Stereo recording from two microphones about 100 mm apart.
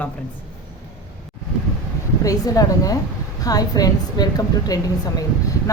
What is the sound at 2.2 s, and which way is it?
A woman's voice, 35° left (ahead or behind).